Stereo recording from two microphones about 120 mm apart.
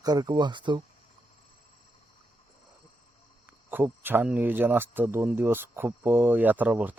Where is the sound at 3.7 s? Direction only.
15° right (ahead or behind).